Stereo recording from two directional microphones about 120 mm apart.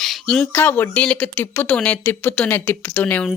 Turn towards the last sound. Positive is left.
turn(degrees=15)  # may be behind; listen again after turning